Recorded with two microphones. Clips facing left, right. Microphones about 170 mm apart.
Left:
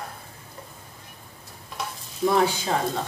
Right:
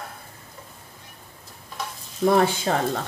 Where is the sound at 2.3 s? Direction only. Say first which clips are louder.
Right 2 dB; 55° right (ahead or behind).